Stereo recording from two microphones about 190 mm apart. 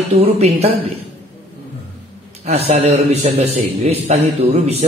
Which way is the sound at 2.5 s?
35° right (ahead or behind).